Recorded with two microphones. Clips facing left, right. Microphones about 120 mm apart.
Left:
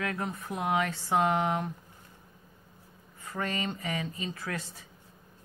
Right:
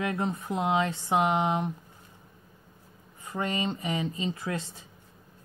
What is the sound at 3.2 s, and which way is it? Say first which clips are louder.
Speech: right 3 dB; 20° right (ahead or behind).